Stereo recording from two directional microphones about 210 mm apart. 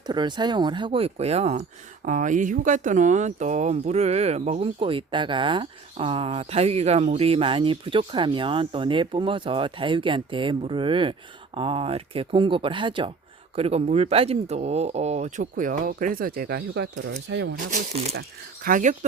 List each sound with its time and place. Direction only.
0.1 s speech: 20° right (ahead or behind); by 17.6 s 55° right (ahead or behind)
17.7 s speech: 30° right (ahead or behind)